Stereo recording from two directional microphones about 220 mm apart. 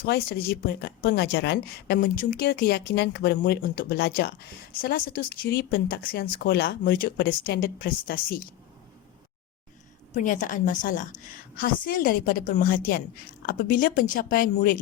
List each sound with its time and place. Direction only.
0.0 s speech: 45° left (ahead or behind)
10.2 s a woman's voice: 35° left (ahead or behind)